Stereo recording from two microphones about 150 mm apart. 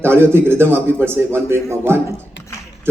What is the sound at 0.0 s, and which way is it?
A man's voice, 15° right (ahead or behind).